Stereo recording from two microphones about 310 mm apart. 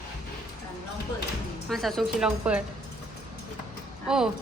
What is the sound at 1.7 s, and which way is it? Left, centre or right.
Speech, centre.